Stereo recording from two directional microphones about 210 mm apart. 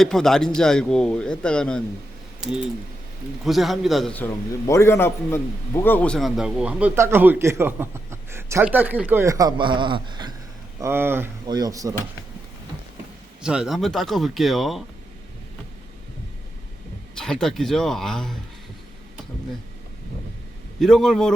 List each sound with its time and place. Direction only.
0.0 s speech: centre (ahead or behind)
2.4 s typing: 5° right (ahead or behind)
3.4 s a man's voice: centre (ahead or behind); by 12.0 s 15° right (ahead or behind)
13.4 s speech: 5° right (ahead or behind)
17.2 s speech: 5° left (ahead or behind)
20.7 s speech: centre (ahead or behind)